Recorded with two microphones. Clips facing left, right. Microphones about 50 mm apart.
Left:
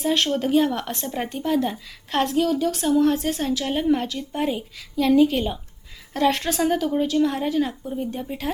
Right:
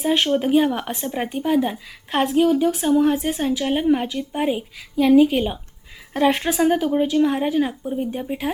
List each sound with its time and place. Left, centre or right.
0.0 s a woman's voice: centre